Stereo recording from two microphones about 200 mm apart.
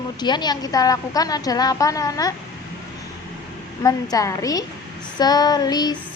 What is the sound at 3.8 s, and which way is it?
A woman's voice, 15° left (ahead or behind).